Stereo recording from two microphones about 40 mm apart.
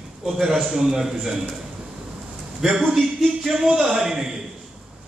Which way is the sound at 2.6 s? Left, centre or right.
Centre.